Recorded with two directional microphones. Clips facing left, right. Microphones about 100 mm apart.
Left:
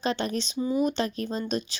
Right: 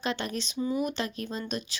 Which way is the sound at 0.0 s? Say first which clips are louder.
Left 4 dB; 25° left (ahead or behind).